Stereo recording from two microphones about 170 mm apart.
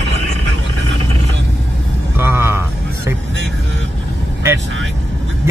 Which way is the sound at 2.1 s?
15° right (ahead or behind).